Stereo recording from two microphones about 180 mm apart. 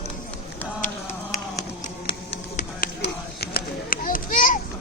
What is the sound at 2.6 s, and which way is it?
Run, 55° left (ahead or behind).